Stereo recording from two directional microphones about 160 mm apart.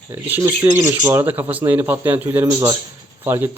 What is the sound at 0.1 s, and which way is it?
A man's voice, 10° right (ahead or behind).